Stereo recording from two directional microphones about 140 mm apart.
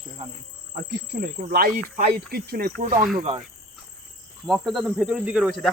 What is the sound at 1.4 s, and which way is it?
Speech, 90° right.